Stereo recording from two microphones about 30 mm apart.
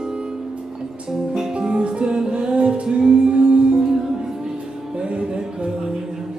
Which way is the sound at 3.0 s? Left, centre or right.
Right.